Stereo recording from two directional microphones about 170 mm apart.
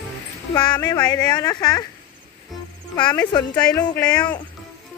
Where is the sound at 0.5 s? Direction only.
25° left (ahead or behind).